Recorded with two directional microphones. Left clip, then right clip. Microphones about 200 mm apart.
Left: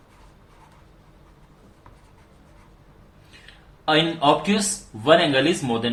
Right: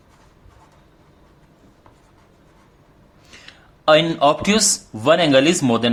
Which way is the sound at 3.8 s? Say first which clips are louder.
Right 5 dB; 55° right (ahead or behind).